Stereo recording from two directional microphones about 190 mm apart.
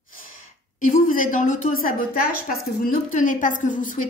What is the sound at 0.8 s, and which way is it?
Speech, 45° left (ahead or behind).